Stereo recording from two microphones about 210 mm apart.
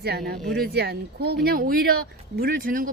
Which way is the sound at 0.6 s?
50° right (ahead or behind).